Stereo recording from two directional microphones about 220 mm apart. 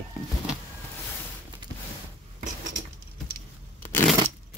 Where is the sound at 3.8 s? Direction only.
10° left (ahead or behind).